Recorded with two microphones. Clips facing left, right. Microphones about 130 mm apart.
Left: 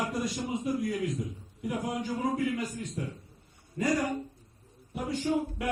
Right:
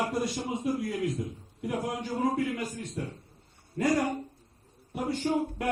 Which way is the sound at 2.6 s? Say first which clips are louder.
Even; 30° right (ahead or behind).